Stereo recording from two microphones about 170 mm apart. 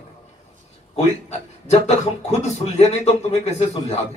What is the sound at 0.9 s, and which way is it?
A man's voice, 40° left (ahead or behind).